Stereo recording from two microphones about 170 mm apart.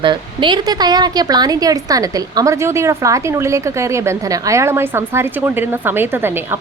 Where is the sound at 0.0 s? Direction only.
30° right (ahead or behind).